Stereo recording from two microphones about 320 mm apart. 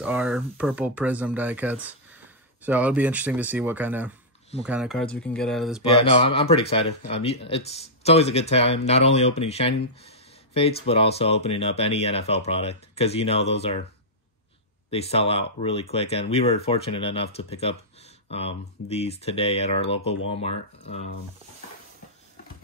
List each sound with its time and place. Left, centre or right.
0.0 s speech: centre
5.9 s speech: centre
14.9 s speech: centre